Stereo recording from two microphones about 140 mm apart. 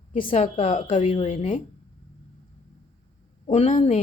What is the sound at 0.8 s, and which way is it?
Speech, 60° left (ahead or behind).